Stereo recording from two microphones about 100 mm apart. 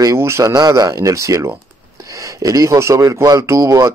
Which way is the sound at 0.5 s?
40° right (ahead or behind).